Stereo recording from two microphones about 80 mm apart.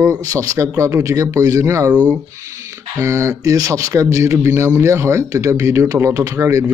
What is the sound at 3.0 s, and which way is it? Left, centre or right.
A man's voice, right.